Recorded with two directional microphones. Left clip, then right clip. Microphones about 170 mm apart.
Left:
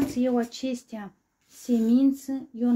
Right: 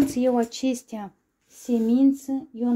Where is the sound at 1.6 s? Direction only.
20° right (ahead or behind).